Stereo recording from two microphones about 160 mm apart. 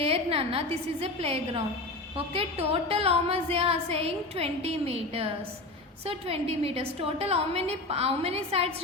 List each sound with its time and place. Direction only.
0.0 s a woman's voice: 35° right (ahead or behind)